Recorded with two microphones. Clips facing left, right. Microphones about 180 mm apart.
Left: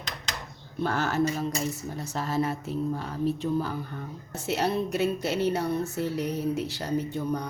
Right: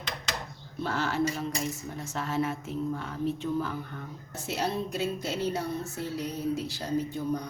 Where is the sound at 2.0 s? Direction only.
35° left (ahead or behind).